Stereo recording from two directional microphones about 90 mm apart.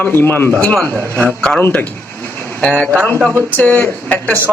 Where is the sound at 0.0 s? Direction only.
20° left (ahead or behind).